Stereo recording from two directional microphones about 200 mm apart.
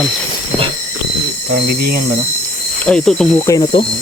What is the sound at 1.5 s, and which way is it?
Speech, 50° right (ahead or behind).